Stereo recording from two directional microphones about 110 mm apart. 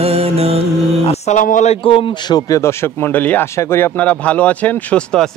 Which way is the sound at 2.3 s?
30° left (ahead or behind).